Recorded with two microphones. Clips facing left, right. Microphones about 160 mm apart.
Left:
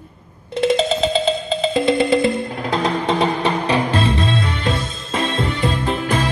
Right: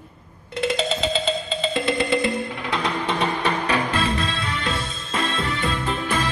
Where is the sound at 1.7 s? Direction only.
35° left (ahead or behind).